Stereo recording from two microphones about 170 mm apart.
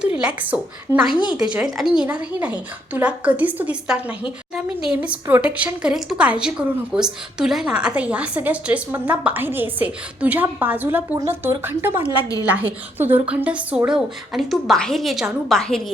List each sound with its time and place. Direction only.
0.0 s a woman's voice: 5° right (ahead or behind)
1.1 s speech: 30° left (ahead or behind)
1.4 s a woman's voice: 5° right (ahead or behind)